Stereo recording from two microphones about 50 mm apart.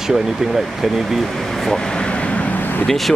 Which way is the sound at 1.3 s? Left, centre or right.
Centre.